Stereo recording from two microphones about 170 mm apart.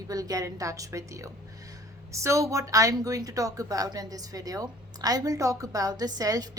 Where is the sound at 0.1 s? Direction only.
20° right (ahead or behind).